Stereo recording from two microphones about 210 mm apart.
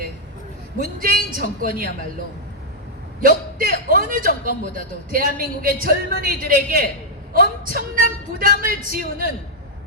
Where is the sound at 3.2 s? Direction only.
40° right (ahead or behind).